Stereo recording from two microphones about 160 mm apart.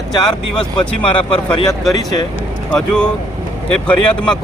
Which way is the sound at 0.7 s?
30° left (ahead or behind).